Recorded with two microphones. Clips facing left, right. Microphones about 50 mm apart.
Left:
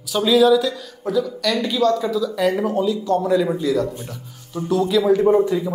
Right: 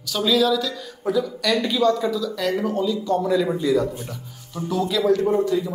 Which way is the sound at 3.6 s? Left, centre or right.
Centre.